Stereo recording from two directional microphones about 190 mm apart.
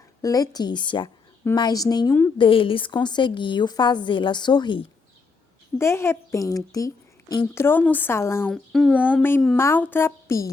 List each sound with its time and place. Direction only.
0.2 s a woman's voice: 20° left (ahead or behind)
5.7 s a woman's voice: 15° left (ahead or behind)
8.5 s speech: centre (ahead or behind)
9.2 s a woman's voice: 5° left (ahead or behind)